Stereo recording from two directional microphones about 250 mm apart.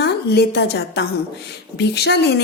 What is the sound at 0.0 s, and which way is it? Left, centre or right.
A woman's voice, left.